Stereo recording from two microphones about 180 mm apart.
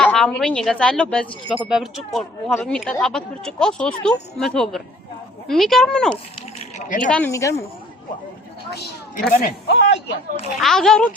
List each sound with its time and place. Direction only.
0.0 s speech: 5° left (ahead or behind)
6.7 s speech: 45° left (ahead or behind)
7.1 s speech: 10° left (ahead or behind)
8.7 s a woman's voice: 65° left (ahead or behind)
10.6 s speech: centre (ahead or behind)